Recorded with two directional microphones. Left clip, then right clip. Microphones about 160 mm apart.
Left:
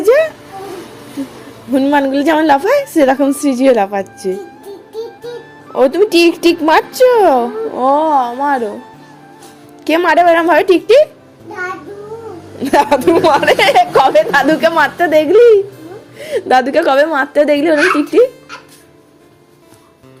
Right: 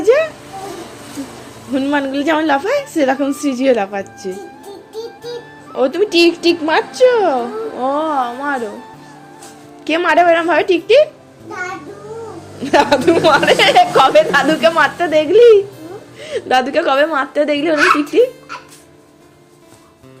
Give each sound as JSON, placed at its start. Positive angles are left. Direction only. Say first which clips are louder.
{"t": 0.0, "sound": "a sound", "louder": "left 2 dB", "side_deg": 45}
{"t": 1.7, "sound": "a woman's voice", "louder": "left 5 dB", "side_deg": 40}
{"t": 5.7, "sound": "a woman's voice", "louder": "left 4 dB", "side_deg": 40}
{"t": 9.8, "sound": "a woman's voice", "louder": "left 2 dB", "side_deg": 45}
{"t": 12.5, "sound": "a woman's voice", "louder": "left 1 dB", "side_deg": 50}